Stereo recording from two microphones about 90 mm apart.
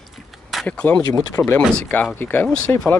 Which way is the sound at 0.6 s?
15° left (ahead or behind).